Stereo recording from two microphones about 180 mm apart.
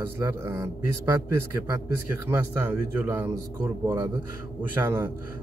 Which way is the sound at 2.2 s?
10° right (ahead or behind).